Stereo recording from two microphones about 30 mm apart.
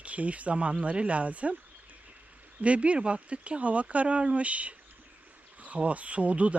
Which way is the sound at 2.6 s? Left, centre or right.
Right.